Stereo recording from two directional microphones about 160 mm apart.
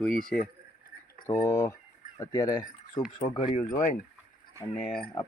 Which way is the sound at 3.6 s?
50° left (ahead or behind).